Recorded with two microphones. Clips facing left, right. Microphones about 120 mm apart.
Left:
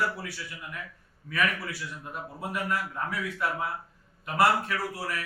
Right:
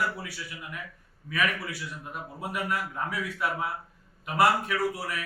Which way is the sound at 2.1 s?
15° right (ahead or behind).